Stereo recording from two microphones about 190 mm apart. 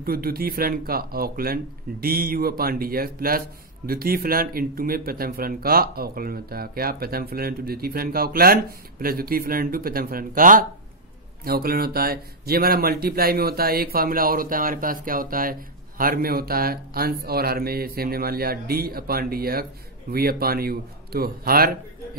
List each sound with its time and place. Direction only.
0.0 s speech: 50° right (ahead or behind)